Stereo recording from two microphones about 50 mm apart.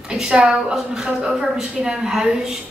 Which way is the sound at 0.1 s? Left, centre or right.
Centre.